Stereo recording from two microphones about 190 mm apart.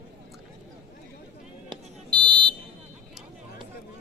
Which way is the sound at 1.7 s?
25° right (ahead or behind).